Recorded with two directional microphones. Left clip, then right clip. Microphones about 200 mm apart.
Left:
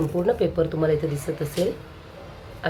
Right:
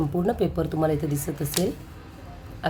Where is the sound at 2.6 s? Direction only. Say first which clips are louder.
Left 1 dB; 35° right (ahead or behind).